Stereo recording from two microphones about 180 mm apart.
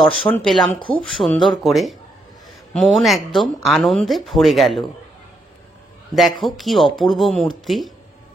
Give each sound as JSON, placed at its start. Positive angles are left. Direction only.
{"t": 0.1, "sound": "speech", "side_deg": 0}
{"t": 0.7, "sound": "speech", "side_deg": 30}
{"t": 1.0, "sound": "speech", "side_deg": 5}
{"t": 6.4, "sound": "speech", "side_deg": 0}